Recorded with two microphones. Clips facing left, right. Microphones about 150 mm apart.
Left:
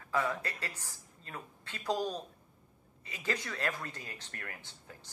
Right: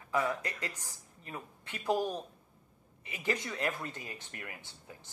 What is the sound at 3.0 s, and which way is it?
Speech, 15° right (ahead or behind).